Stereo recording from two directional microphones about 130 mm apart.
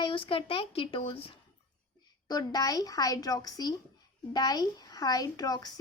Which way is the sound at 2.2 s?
30° left (ahead or behind).